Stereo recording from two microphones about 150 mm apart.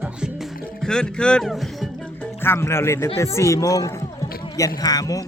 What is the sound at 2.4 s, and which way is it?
Speech, 15° left (ahead or behind).